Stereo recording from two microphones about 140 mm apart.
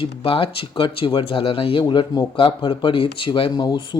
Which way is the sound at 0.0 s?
40° left (ahead or behind).